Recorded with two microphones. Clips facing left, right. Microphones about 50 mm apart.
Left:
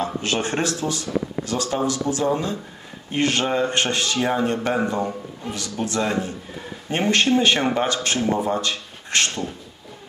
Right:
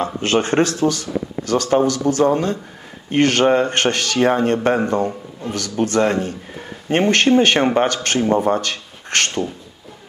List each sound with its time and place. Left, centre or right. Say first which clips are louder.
0.0 s speech: right 5 dB; right